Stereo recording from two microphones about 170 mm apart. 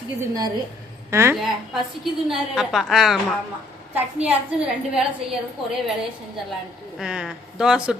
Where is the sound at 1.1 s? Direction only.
15° right (ahead or behind).